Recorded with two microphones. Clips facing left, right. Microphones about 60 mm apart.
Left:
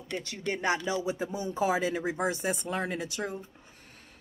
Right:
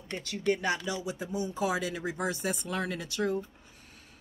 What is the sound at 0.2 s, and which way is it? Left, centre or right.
Speech, left.